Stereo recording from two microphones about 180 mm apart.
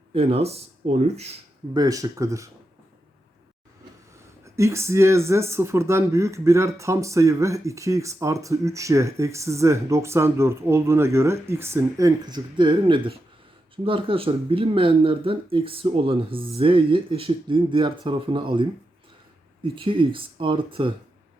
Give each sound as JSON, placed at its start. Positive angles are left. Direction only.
{"t": 0.1, "sound": "speech", "side_deg": -35}
{"t": 1.7, "sound": "speech", "side_deg": -20}
{"t": 4.4, "sound": "speech", "side_deg": -15}